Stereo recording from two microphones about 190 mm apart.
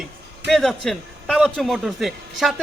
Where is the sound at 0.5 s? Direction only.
Centre (ahead or behind).